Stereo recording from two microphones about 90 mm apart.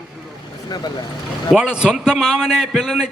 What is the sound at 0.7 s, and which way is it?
Speech, 50° left (ahead or behind).